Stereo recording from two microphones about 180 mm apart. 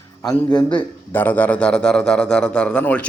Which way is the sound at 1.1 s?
10° left (ahead or behind).